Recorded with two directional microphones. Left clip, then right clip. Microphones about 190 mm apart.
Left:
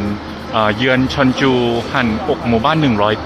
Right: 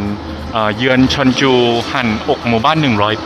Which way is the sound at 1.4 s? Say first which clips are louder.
Right 4 dB; 35° right (ahead or behind).